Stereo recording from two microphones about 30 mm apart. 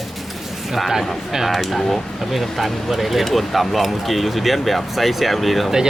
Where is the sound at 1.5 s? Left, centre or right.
Centre.